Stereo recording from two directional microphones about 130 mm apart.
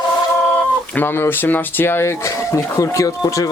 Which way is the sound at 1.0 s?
15° left (ahead or behind).